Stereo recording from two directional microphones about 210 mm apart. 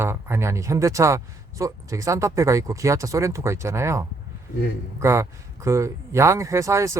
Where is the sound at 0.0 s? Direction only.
10° right (ahead or behind).